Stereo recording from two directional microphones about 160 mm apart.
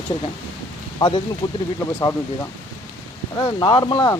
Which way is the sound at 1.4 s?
25° left (ahead or behind).